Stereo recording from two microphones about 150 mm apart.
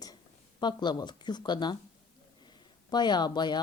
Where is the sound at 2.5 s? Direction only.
30° left (ahead or behind).